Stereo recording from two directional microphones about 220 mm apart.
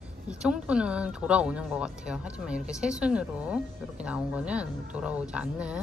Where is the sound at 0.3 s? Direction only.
5° right (ahead or behind).